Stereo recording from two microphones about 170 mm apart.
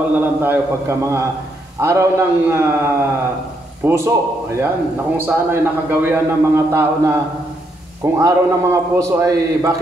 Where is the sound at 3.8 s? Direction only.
15° right (ahead or behind).